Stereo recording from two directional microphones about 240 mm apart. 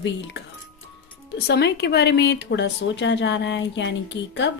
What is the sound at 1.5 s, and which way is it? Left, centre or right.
A woman's voice, left.